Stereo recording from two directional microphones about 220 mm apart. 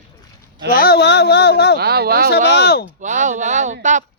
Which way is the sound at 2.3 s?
50° left (ahead or behind).